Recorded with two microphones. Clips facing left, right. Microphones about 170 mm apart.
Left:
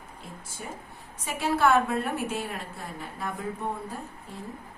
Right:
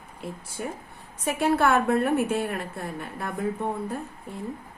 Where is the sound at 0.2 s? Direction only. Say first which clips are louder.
Right 8 dB; 60° right (ahead or behind).